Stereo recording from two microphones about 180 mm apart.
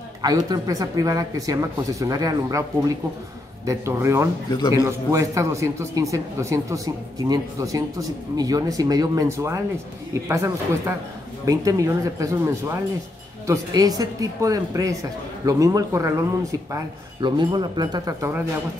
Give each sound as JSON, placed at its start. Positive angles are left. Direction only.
{"t": 0.2, "sound": "speech", "side_deg": -20}
{"t": 3.6, "sound": "speech", "side_deg": -15}
{"t": 4.5, "sound": "a man's voice", "side_deg": 25}
{"t": 4.7, "sound": "speech", "side_deg": -15}